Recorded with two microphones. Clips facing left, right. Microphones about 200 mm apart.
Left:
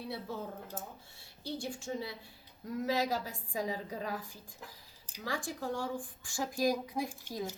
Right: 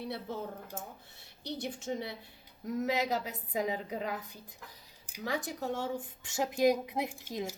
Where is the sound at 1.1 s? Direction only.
20° right (ahead or behind).